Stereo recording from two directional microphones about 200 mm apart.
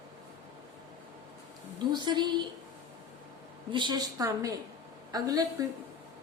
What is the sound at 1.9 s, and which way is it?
Speech, 20° right (ahead or behind).